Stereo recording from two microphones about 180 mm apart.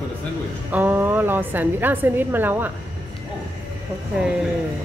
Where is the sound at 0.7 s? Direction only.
10° right (ahead or behind).